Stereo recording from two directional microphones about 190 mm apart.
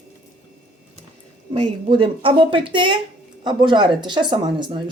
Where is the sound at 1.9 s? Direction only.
25° right (ahead or behind).